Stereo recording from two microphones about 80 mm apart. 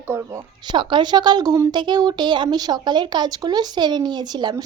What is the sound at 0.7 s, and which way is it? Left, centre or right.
A woman's voice, right.